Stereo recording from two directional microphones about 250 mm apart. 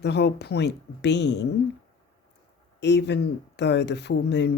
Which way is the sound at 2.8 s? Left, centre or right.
Left.